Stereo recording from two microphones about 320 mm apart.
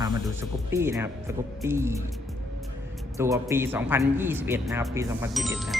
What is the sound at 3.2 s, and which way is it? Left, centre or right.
A man's voice, centre.